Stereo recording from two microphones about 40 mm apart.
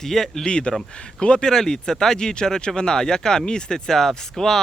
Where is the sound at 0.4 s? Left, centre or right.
Left.